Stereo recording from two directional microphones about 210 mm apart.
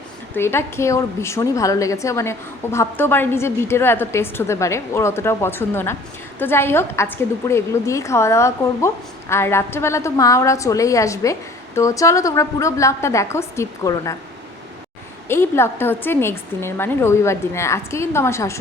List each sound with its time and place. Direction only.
0.3 s a woman's voice: 10° left (ahead or behind)
15.3 s a woman's voice: 10° left (ahead or behind)